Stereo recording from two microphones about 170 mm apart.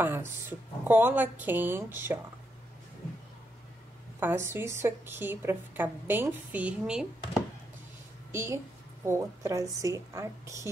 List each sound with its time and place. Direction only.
0.0 s a woman's voice: 10° right (ahead or behind)
4.2 s a woman's voice: 15° right (ahead or behind)